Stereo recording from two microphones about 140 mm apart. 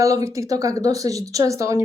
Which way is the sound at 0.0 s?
25° right (ahead or behind).